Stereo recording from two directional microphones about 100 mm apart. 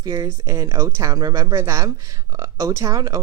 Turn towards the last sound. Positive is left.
turn(degrees=-35)  # may be behind; listen again after turning